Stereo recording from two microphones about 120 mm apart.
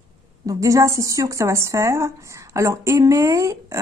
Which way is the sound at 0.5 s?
25° right (ahead or behind).